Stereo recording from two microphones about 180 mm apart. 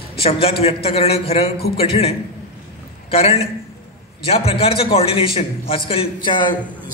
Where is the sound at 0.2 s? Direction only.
35° left (ahead or behind).